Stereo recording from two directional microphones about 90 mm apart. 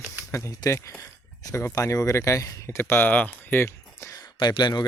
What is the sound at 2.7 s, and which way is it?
Speech, 25° left (ahead or behind).